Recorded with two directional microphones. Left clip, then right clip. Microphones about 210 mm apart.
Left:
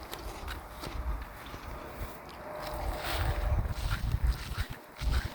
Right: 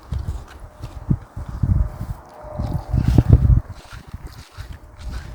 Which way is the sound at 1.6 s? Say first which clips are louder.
Right 13 dB; 20° right (ahead or behind).